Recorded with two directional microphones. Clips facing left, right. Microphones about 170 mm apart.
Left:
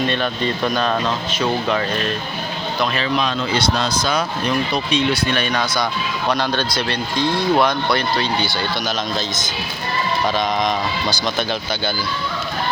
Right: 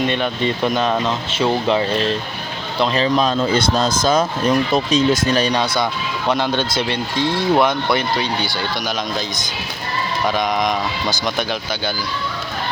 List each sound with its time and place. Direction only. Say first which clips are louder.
0.0 s speech: right 1 dB; 15° right (ahead or behind)
6.3 s speech: right 3 dB; 20° right (ahead or behind)